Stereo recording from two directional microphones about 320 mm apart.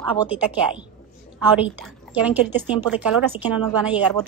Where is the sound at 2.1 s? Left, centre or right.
Centre.